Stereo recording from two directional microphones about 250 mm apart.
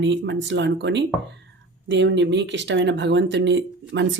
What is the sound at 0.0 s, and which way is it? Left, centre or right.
Speech, right.